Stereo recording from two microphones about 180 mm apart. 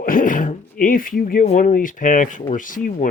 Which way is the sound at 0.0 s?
50° left (ahead or behind).